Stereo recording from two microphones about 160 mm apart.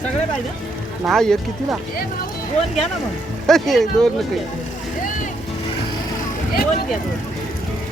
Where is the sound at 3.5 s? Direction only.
Centre (ahead or behind).